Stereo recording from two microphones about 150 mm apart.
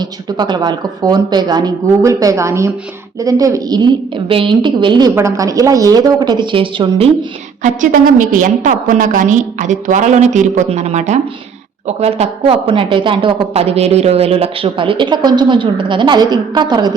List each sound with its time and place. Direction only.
0.0 s speech: 30° right (ahead or behind)
5.1 s speech: 20° right (ahead or behind); by 7.3 s 35° right (ahead or behind)
7.6 s a woman's voice: 60° right (ahead or behind); by 16.9 s 30° right (ahead or behind)